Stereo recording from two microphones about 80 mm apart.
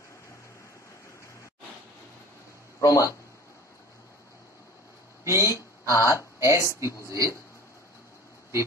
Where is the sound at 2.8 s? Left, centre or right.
Left.